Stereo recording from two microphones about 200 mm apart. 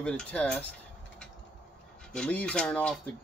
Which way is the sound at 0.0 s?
5° left (ahead or behind).